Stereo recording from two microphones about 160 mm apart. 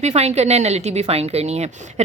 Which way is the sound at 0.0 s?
40° right (ahead or behind).